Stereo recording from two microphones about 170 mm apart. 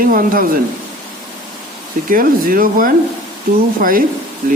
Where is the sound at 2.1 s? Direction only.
55° right (ahead or behind).